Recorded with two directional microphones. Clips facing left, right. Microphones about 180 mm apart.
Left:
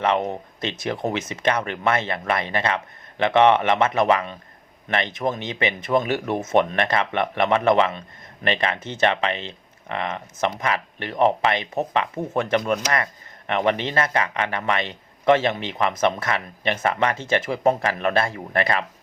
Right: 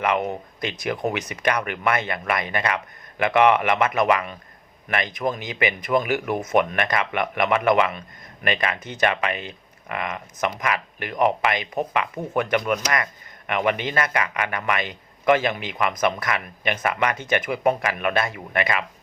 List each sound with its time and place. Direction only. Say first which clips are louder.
0.0 s a man's voice: left 1 dB; 30° left (ahead or behind)